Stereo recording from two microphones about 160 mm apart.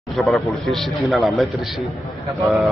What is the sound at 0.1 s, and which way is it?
A man's voice, centre (ahead or behind).